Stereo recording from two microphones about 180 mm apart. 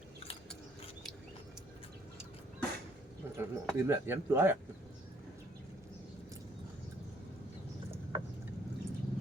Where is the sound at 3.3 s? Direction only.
10° right (ahead or behind).